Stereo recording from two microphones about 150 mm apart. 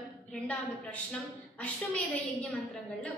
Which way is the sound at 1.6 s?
10° left (ahead or behind).